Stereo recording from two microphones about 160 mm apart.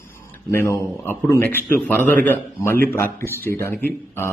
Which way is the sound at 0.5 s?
15° left (ahead or behind).